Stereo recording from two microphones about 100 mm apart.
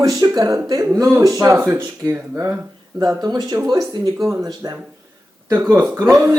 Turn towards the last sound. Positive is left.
turn(degrees=-30)  # may be behind; listen again after turning